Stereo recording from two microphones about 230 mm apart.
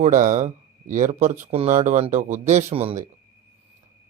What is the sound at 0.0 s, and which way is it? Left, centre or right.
Speech, right.